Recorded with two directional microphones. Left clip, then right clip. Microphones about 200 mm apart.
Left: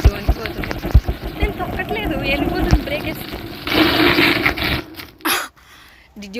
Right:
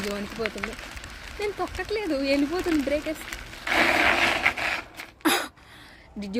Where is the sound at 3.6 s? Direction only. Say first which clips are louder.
Left 6 dB; 45° left (ahead or behind).